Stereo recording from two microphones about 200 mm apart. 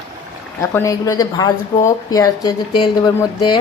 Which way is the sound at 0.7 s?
15° left (ahead or behind).